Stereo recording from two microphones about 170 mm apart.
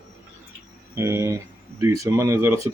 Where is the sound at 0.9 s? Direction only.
15° right (ahead or behind).